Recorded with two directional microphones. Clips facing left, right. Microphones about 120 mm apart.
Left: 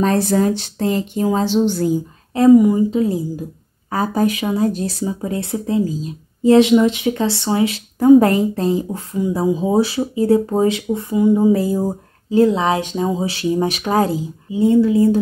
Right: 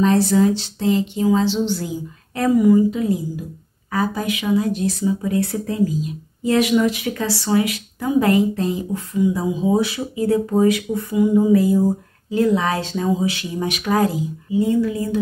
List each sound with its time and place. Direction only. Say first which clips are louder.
0.0 s speech: even; 50° left (ahead or behind)
2.3 s speech: left 4 dB; 25° left (ahead or behind)
3.9 s speech: left 4 dB; 40° left (ahead or behind)
8.0 s speech: left 6 dB; 40° left (ahead or behind)